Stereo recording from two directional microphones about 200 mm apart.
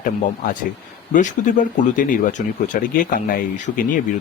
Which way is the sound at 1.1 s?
40° left (ahead or behind).